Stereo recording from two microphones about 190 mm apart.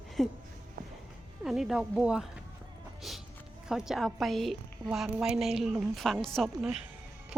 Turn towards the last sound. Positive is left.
turn(degrees=0)  # may be behind; listen again after turning